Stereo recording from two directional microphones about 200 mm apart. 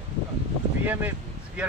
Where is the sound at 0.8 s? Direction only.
10° right (ahead or behind).